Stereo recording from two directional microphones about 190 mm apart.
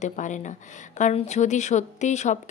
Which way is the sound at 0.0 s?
40° left (ahead or behind).